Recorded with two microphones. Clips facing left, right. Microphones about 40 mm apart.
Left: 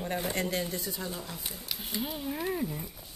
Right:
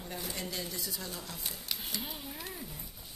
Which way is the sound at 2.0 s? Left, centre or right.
Centre.